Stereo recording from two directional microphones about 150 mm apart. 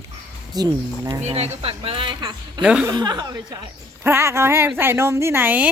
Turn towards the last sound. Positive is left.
turn(degrees=-10)  # may be behind; listen again after turning